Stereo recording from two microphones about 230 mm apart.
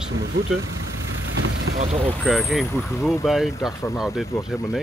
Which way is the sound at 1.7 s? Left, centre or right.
Right.